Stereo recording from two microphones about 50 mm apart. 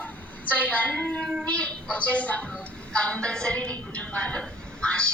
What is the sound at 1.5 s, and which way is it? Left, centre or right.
A woman's voice, left.